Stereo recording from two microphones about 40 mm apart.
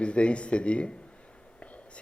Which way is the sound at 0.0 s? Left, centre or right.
Left.